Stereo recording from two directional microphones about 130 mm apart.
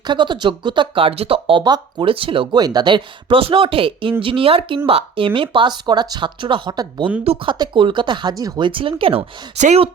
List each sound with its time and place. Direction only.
0.0 s speech: 35° right (ahead or behind)
9.6 s speech: 65° right (ahead or behind)